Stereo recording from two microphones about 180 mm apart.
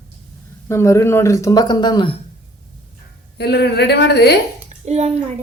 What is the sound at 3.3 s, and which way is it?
A woman's voice, 65° left (ahead or behind).